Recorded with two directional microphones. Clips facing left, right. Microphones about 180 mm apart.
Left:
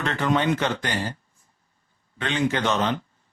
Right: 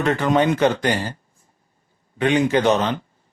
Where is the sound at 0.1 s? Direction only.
45° right (ahead or behind).